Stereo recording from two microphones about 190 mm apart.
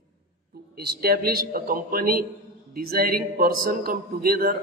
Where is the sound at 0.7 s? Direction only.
55° right (ahead or behind).